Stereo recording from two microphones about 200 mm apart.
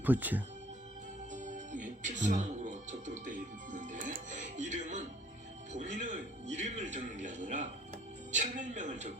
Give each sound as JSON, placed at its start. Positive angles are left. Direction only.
{"t": 0.0, "sound": "speech", "side_deg": -10}
{"t": 1.3, "sound": "music", "side_deg": -35}
{"t": 5.7, "sound": "a man's voice", "side_deg": -35}